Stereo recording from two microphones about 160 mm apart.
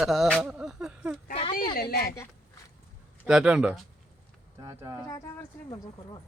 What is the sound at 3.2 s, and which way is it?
Speech, 5° right (ahead or behind).